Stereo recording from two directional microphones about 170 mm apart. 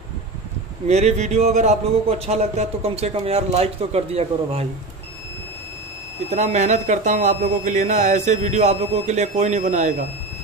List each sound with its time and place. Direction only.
0.8 s speech: 40° right (ahead or behind)
6.3 s a man's voice: 45° right (ahead or behind)